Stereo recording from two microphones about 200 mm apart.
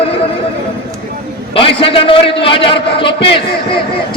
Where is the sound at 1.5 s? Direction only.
25° left (ahead or behind).